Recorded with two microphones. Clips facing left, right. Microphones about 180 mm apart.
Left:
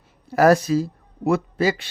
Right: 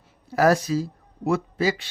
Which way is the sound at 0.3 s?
55° left (ahead or behind).